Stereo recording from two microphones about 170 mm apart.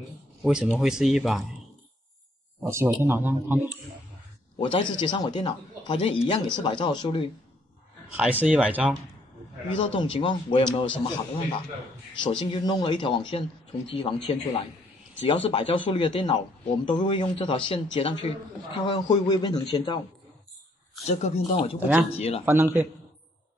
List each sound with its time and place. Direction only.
0.4 s speech: 5° right (ahead or behind)
2.6 s speech: 15° right (ahead or behind)
4.6 s speech: 30° left (ahead or behind)
8.2 s speech: 5° right (ahead or behind)
9.8 s speech: 30° left (ahead or behind)
12.2 s speech: 30° left (ahead or behind)
21.1 s speech: 40° left (ahead or behind)
21.7 s speech: 10° right (ahead or behind)
22.1 s speech: 35° left (ahead or behind)
22.4 s speech: 15° right (ahead or behind)